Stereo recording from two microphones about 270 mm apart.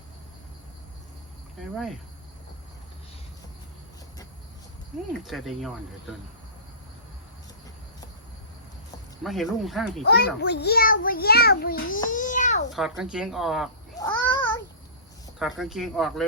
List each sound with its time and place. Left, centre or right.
1.7 s speech: centre
5.2 s speech: centre
9.2 s speech: centre
10.1 s a child's voice: left
12.0 s babbling: left
13.0 s speech: centre
14.0 s child singing: centre
15.4 s speech: centre